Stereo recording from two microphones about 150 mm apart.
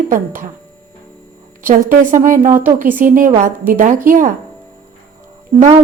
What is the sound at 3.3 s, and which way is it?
A woman's voice, 50° right (ahead or behind).